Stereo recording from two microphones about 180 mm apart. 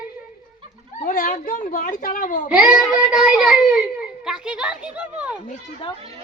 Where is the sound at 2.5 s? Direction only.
5° right (ahead or behind).